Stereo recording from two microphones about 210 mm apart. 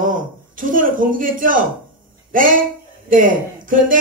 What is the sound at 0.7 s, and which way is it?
A woman's voice, 40° right (ahead or behind).